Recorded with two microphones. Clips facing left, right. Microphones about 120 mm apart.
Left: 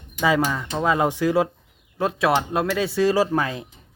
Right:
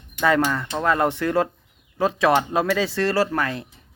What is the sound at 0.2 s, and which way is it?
Speech, 10° left (ahead or behind).